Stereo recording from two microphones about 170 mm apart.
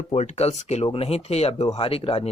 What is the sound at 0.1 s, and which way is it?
Speech, 40° left (ahead or behind).